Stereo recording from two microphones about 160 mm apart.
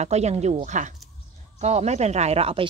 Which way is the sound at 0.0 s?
45° right (ahead or behind).